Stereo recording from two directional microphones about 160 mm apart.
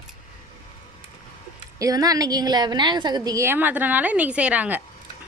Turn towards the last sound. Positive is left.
turn(degrees=-10)  # may be behind; listen again after turning